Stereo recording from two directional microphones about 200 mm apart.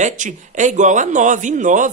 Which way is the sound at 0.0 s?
40° right (ahead or behind).